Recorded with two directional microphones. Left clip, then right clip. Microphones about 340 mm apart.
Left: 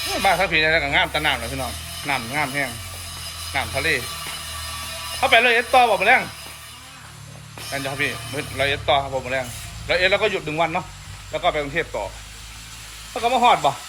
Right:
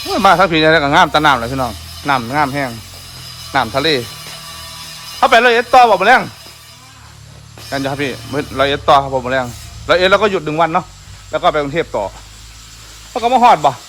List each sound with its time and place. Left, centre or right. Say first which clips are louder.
0.3 s speech: right 8 dB; right
5.2 s speech: right 6 dB; right
7.7 s speech: right 5 dB; right
13.2 s speech: right 7 dB; right